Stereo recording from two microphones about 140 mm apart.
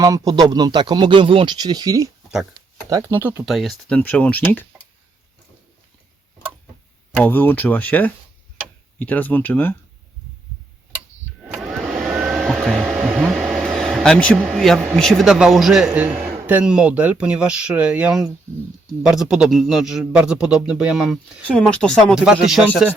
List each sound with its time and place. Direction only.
0.0 s speech: 25° right (ahead or behind)
2.9 s speech: 15° right (ahead or behind)
3.4 s speech: centre (ahead or behind)
7.2 s speech: 15° left (ahead or behind)
11.6 s vacuum cleaner: 5° right (ahead or behind)
14.4 s a man's voice: centre (ahead or behind)
22.1 s speech: 5° right (ahead or behind)